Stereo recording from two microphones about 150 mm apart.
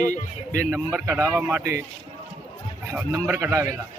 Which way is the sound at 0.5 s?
15° right (ahead or behind).